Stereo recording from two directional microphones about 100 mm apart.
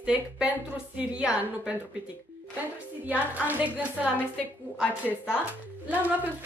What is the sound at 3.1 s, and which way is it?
Speech, 15° right (ahead or behind).